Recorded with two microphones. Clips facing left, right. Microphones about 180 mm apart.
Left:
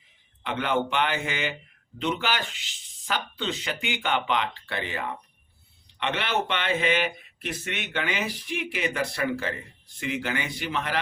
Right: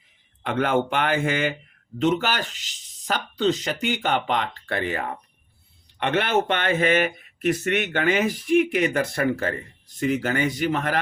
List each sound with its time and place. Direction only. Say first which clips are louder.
0.4 s speech: right 4 dB; 45° right (ahead or behind)